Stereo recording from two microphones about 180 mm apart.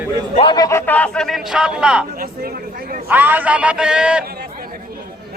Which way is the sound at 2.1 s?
55° right (ahead or behind).